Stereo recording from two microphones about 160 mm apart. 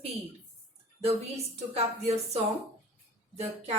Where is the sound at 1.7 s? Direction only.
40° right (ahead or behind).